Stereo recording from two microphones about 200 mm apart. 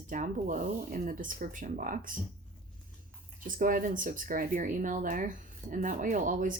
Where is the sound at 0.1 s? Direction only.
40° right (ahead or behind).